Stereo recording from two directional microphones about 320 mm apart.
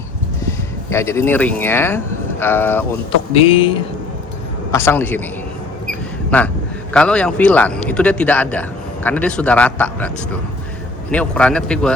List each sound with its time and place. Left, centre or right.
0.9 s speech: centre
6.9 s speech: centre
11.1 s speech: centre